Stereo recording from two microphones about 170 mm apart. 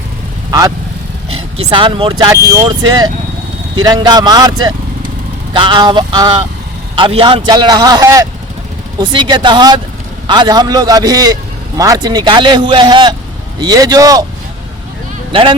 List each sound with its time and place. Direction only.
1.7 s a man's voice: 30° right (ahead or behind)
15.3 s speech: 30° right (ahead or behind)